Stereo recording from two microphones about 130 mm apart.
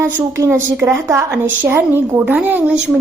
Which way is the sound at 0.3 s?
20° right (ahead or behind).